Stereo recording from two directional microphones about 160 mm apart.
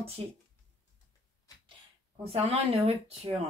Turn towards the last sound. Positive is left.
turn(degrees=-40)  # may be behind; listen again after turning